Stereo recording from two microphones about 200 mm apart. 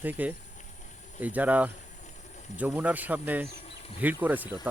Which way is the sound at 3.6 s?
25° left (ahead or behind).